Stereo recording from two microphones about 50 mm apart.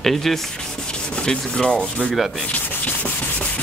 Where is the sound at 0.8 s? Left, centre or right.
Centre.